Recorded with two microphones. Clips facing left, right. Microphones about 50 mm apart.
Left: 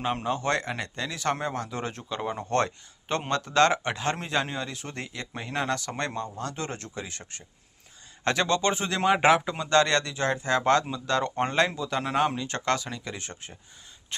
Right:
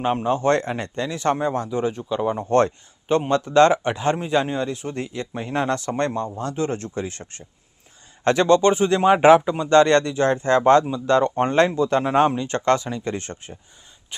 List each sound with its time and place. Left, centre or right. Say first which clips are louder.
0.0 s a man's voice: right 7 dB; centre
0.3 s speech: right 9 dB; right
1.7 s speech: right 9 dB; centre
2.4 s a man's voice: right 7 dB; right
5.6 s speech: right 7 dB; right
9.0 s a man's voice: right 6 dB; centre
13.1 s speech: right 9 dB; right
14.1 s speech: even; centre